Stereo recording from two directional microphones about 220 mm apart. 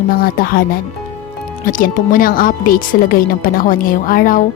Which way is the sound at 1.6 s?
40° left (ahead or behind).